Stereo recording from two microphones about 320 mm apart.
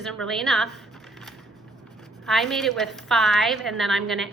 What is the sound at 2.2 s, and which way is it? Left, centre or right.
A woman's voice, centre.